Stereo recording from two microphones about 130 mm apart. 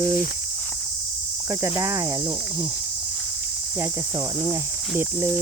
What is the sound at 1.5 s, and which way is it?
Speech, 20° right (ahead or behind).